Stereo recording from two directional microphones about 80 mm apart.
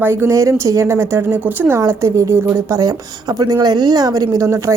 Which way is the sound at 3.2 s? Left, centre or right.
Right.